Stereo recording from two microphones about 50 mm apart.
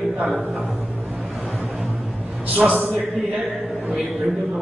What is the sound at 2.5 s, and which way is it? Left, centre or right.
Speech, right.